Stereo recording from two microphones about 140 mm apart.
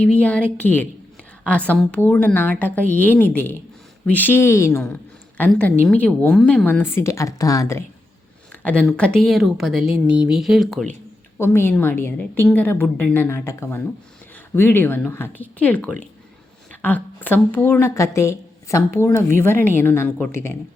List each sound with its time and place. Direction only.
0.0 s a woman's voice: 10° left (ahead or behind)
8.6 s speech: 10° left (ahead or behind)
11.3 s a woman's voice: 15° left (ahead or behind)